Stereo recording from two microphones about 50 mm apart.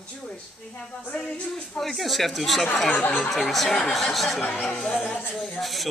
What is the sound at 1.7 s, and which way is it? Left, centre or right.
Speech, centre.